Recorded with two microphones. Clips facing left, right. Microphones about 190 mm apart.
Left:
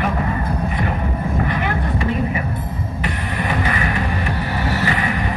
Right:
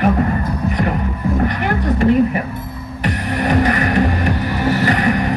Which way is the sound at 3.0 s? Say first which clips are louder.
Right 7 dB; 45° right (ahead or behind).